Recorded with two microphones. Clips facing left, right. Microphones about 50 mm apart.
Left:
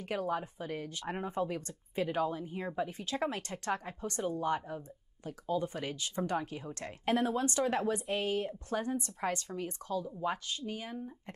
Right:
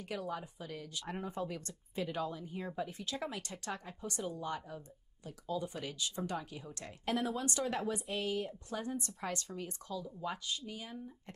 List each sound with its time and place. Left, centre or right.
0.0 s a woman's voice: left
7.1 s a woman's voice: centre